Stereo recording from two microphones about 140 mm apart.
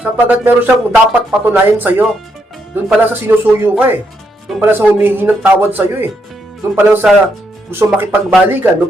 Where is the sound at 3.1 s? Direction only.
15° right (ahead or behind).